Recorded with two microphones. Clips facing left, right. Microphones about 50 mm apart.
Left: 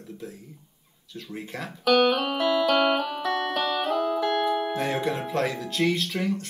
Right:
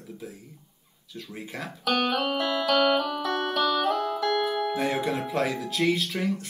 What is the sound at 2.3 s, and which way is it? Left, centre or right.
Music, centre.